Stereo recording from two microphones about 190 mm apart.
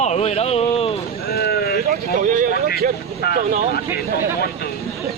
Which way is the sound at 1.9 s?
45° right (ahead or behind).